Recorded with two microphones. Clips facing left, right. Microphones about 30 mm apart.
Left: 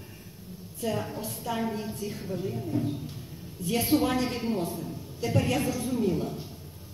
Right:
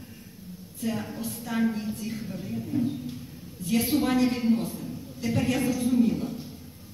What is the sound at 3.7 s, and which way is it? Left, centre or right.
Speech, left.